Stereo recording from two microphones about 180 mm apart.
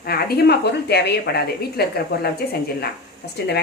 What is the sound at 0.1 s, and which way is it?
A woman's voice, 60° left (ahead or behind).